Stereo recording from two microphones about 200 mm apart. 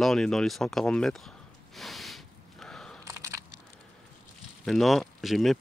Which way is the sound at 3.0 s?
15° right (ahead or behind).